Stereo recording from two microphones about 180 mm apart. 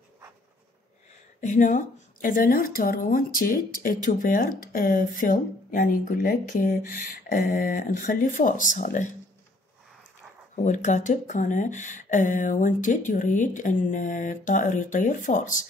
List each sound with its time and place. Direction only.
1.4 s a woman's voice: 45° left (ahead or behind)
10.5 s a woman's voice: 40° left (ahead or behind)